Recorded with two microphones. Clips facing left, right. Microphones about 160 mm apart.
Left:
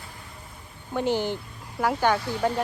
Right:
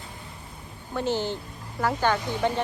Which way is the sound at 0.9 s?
15° left (ahead or behind).